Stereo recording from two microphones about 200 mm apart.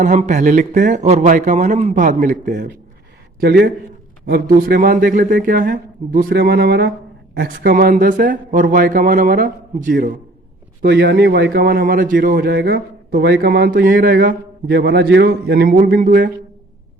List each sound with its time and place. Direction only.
0.0 s a man's voice: 35° right (ahead or behind)
3.4 s a man's voice: 55° right (ahead or behind)